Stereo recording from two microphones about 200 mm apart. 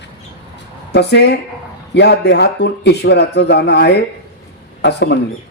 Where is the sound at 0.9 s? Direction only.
55° left (ahead or behind).